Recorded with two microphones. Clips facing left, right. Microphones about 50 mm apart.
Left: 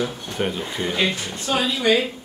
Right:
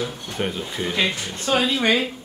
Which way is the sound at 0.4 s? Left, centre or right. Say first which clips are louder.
Left 1 dB; centre.